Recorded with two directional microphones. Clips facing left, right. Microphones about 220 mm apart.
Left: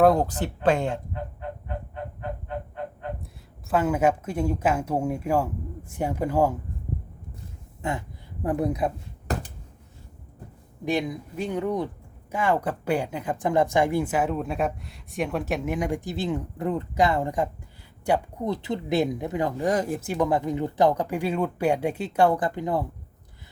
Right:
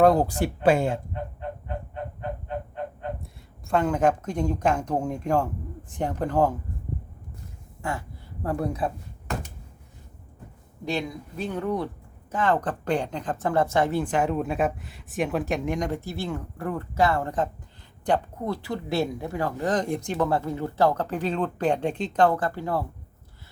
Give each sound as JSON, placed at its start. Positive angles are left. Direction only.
{"t": 0.0, "sound": "speech", "side_deg": 0}
{"t": 0.3, "sound": "speech", "side_deg": -10}
{"t": 3.7, "sound": "speech", "side_deg": 5}
{"t": 7.8, "sound": "a sound", "side_deg": 20}
{"t": 8.4, "sound": "speech", "side_deg": 15}
{"t": 9.3, "sound": "a sound", "side_deg": 35}
{"t": 10.8, "sound": "speech", "side_deg": 15}